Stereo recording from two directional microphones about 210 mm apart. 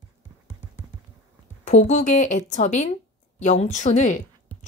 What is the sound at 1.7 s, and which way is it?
Speech, 35° left (ahead or behind).